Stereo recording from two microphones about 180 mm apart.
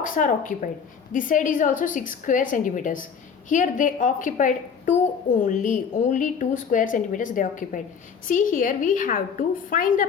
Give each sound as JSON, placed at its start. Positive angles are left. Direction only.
{"t": 0.0, "sound": "a woman's voice", "side_deg": 45}